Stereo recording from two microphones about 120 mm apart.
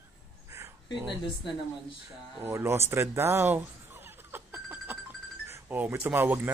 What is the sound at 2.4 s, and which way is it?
Speech, 20° right (ahead or behind).